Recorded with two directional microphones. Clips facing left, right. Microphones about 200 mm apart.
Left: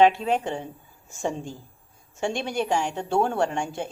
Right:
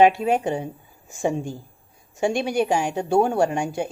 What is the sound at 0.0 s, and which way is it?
A woman's voice, 15° right (ahead or behind).